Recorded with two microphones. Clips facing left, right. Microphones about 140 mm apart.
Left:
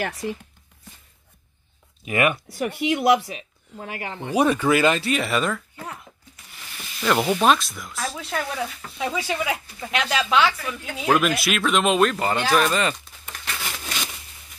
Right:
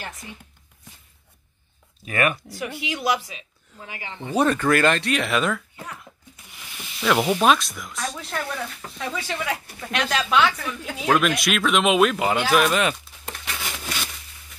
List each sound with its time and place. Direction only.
0.0 s speech: 80° left
2.9 s speech: 55° left (ahead or behind)
4.3 s speech: 10° left (ahead or behind)
6.6 s speech: centre (ahead or behind)
13.6 s a sound: 5° right (ahead or behind)